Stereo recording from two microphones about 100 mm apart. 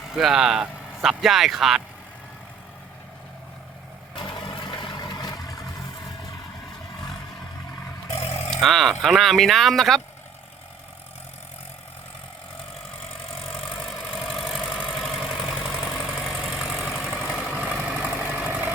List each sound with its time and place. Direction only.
0.1 s speech: 5° right (ahead or behind)
4.2 s vehicle: 55° left (ahead or behind)
8.4 s speech: centre (ahead or behind)
14.1 s vehicle: centre (ahead or behind); by 18.7 s 15° right (ahead or behind)